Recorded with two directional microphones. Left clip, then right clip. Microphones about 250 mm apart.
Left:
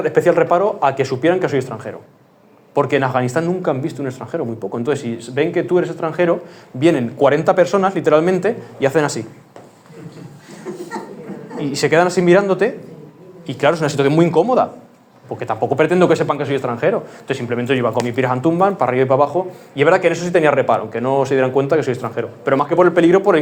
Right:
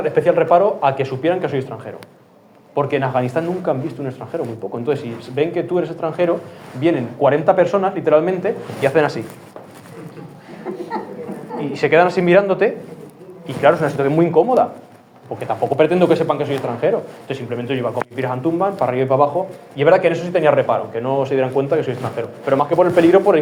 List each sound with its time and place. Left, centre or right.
0.0 s a man's voice: left
11.5 s a man's voice: left